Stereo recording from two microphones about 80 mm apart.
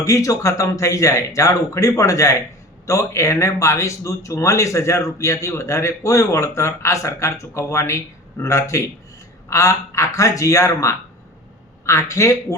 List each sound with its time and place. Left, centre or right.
0.0 s speech: left